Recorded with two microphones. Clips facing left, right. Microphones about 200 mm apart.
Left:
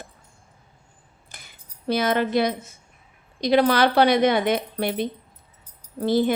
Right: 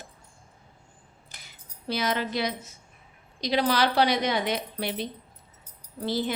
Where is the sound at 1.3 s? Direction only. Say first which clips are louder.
Left 4 dB; 50° left (ahead or behind).